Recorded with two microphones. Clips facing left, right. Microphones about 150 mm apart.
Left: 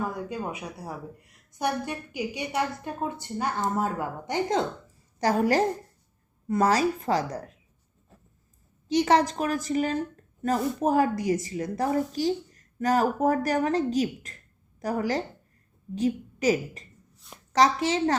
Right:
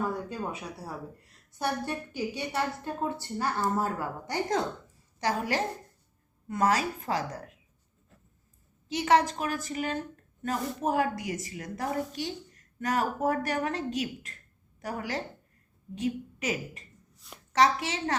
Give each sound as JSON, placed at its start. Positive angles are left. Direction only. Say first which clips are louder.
{"t": 0.1, "sound": "a woman's voice", "louder": "left 1 dB", "side_deg": 15}
{"t": 5.2, "sound": "a woman's voice", "louder": "left 7 dB", "side_deg": 40}
{"t": 8.9, "sound": "a woman's voice", "louder": "left 3 dB", "side_deg": 35}